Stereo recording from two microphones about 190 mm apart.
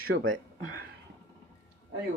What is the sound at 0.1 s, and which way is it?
Speech, 90° right.